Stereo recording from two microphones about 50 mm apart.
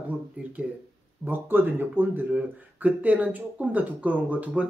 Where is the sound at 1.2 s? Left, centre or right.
Right.